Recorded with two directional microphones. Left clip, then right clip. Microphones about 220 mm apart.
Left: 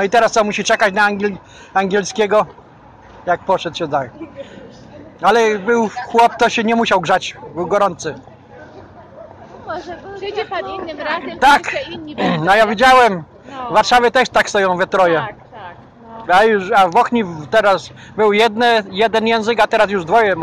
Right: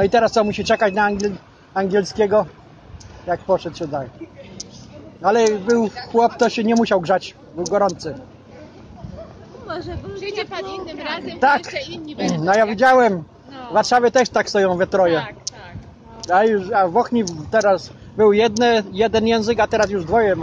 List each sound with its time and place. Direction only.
0.0 s speech: 10° right (ahead or behind)
3.5 s speech: 5° right (ahead or behind)
5.2 s speech: 5° right (ahead or behind)
9.7 s chatter: 50° right (ahead or behind)
10.2 s a woman's voice: 25° right (ahead or behind)
11.3 s speech: 5° right (ahead or behind)
11.8 s speech: 5° left (ahead or behind)
12.2 s speech: 5° right (ahead or behind)
16.3 s speech: 5° right (ahead or behind)